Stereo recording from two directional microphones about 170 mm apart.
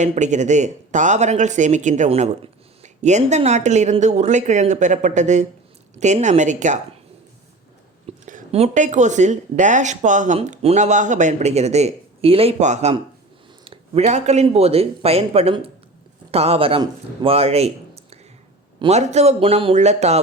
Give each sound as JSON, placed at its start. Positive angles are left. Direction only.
{"t": 0.0, "sound": "speech", "side_deg": -45}
{"t": 8.2, "sound": "a sound", "side_deg": -50}
{"t": 8.5, "sound": "speech", "side_deg": -40}
{"t": 14.1, "sound": "speech", "side_deg": -40}
{"t": 18.8, "sound": "speech", "side_deg": -40}